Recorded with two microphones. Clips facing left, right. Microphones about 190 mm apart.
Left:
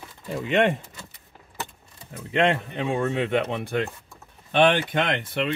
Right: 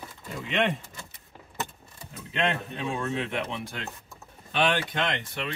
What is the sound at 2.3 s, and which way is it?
Speech, 60° left (ahead or behind).